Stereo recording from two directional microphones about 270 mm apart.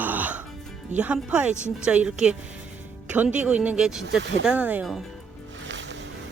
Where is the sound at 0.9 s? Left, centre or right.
Centre.